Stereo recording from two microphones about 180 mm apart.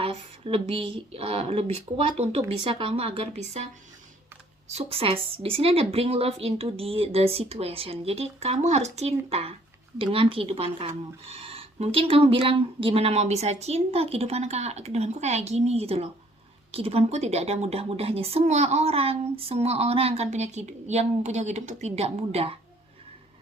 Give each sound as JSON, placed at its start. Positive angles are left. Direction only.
{"t": 0.0, "sound": "a woman's voice", "side_deg": -30}
{"t": 4.7, "sound": "a woman's voice", "side_deg": -35}